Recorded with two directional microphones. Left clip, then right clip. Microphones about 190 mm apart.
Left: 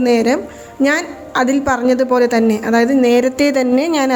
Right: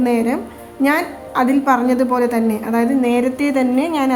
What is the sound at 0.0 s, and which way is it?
A woman's voice, 25° left (ahead or behind).